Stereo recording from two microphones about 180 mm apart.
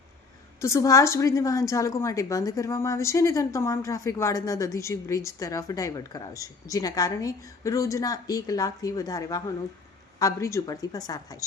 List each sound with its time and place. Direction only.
0.6 s a woman's voice: 15° left (ahead or behind)